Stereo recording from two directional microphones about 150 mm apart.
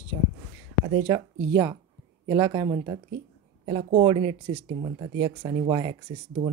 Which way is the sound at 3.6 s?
40° right (ahead or behind).